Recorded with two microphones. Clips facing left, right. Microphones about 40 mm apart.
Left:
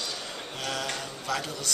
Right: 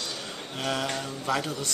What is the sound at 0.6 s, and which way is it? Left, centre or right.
Mantra, centre.